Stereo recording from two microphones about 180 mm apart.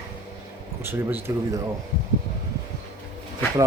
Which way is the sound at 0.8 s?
10° right (ahead or behind).